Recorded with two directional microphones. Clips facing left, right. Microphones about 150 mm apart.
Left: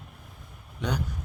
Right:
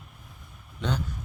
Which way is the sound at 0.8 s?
15° left (ahead or behind).